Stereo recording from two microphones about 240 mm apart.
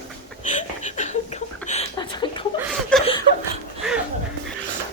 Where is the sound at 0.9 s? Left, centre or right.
Left.